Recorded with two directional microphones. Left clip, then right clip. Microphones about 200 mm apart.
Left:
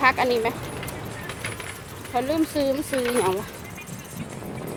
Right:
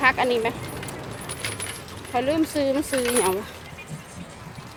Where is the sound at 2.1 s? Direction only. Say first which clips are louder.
Right 1 dB; centre (ahead or behind).